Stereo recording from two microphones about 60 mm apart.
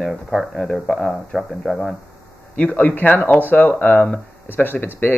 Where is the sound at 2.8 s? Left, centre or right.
Left.